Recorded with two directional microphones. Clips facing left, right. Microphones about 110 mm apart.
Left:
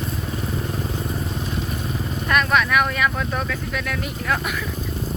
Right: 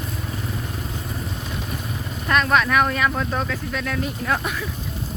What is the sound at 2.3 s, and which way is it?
Speech, 30° right (ahead or behind).